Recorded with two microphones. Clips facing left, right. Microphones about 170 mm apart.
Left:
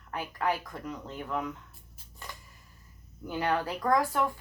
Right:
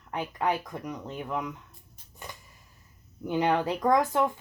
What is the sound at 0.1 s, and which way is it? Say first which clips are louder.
Speech: right 2 dB; 20° right (ahead or behind).